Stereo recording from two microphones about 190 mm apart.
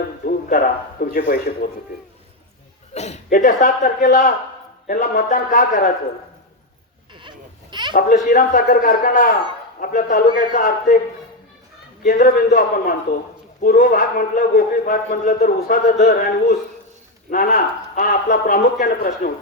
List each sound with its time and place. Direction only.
0.3 s speech: 50° left (ahead or behind)
2.9 s a man's voice: 35° left (ahead or behind)
7.1 s a sound: 25° right (ahead or behind)
8.3 s a man's voice: 45° left (ahead or behind)
12.0 s a man's voice: 45° left (ahead or behind)